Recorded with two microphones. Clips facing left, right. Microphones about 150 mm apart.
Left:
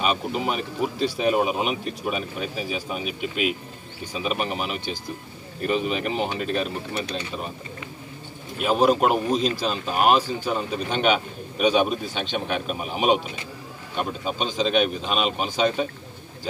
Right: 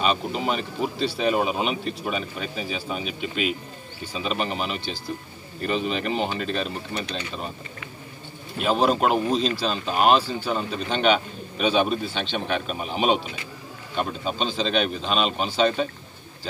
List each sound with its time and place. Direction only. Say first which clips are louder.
0.0 s speech: even; 5° left (ahead or behind)
8.5 s speech: left 2 dB; 10° left (ahead or behind)